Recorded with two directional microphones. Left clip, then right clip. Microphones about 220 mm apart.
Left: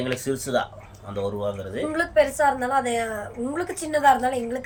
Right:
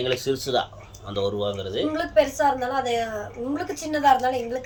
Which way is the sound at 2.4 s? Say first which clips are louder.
Left 1 dB; 20° left (ahead or behind).